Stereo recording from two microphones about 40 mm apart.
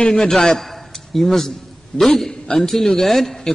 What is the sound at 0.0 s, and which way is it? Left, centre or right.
A man's voice, centre.